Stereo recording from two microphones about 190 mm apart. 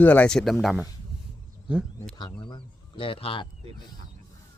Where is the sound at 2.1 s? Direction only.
25° left (ahead or behind).